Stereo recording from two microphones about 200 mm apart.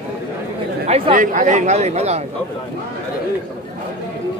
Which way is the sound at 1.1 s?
40° right (ahead or behind).